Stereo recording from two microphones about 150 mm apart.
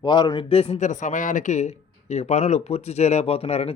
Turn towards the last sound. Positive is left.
turn(degrees=40)  # may be behind; listen again after turning